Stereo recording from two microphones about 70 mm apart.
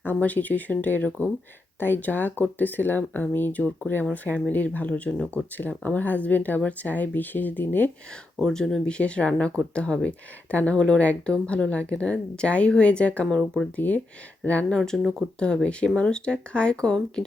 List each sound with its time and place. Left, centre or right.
0.0 s speech: left
8.4 s speech: centre
14.8 s speech: centre